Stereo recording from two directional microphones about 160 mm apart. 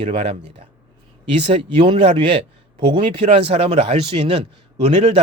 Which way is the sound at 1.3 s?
40° right (ahead or behind).